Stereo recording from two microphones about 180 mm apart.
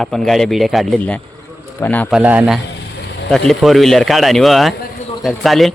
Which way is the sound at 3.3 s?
Centre (ahead or behind).